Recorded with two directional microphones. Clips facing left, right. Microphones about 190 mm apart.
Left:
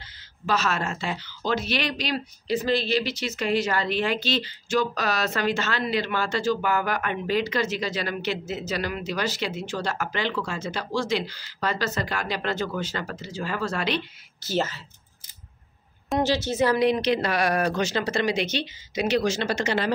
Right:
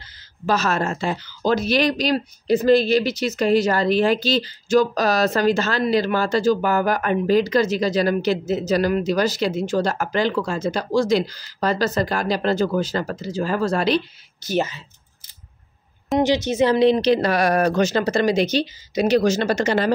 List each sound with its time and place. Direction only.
0.5 s speech: 40° right (ahead or behind)
14.4 s a woman's voice: 15° right (ahead or behind)
16.2 s speech: 15° right (ahead or behind); by 19.9 s 45° right (ahead or behind)